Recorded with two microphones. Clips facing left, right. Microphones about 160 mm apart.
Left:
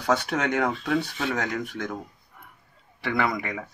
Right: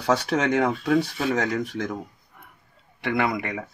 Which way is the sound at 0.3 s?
35° right (ahead or behind).